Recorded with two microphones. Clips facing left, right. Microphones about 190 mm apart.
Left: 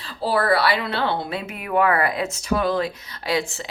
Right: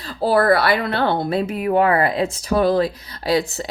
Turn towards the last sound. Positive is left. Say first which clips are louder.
# right 5 dB
turn(degrees=-40)  # may be behind; listen again after turning